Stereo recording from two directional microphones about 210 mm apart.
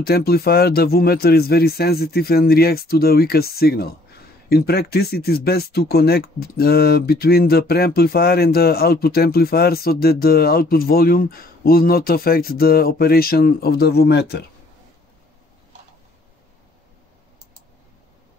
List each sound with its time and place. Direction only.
0.0 s speech: 50° left (ahead or behind)